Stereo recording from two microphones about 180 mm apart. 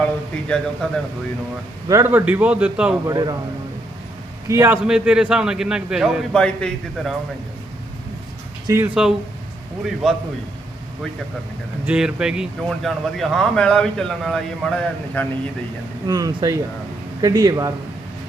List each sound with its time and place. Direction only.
0.0 s a man's voice: 5° left (ahead or behind)
1.9 s a man's voice: 15° right (ahead or behind)
3.1 s speech: 20° right (ahead or behind)
4.4 s a man's voice: 15° right (ahead or behind)
4.9 s speech: 5° right (ahead or behind)
8.6 s speech: 15° right (ahead or behind)
9.8 s speech: centre (ahead or behind)
11.9 s speech: 5° right (ahead or behind)
16.0 s speech: 20° right (ahead or behind)